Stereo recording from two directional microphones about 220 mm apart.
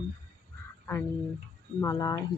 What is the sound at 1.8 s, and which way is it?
Speech, 15° left (ahead or behind).